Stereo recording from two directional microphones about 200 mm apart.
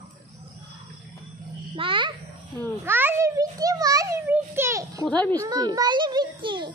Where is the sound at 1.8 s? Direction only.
25° right (ahead or behind).